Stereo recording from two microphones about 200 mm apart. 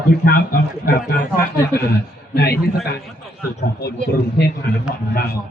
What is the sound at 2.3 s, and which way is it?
Speech, 55° left (ahead or behind).